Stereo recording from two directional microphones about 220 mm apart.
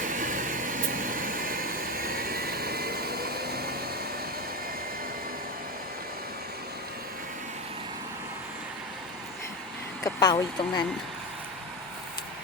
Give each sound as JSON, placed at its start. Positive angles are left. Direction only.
{"t": 0.0, "sound": "vehicle", "side_deg": -35}
{"t": 10.0, "sound": "speech", "side_deg": 15}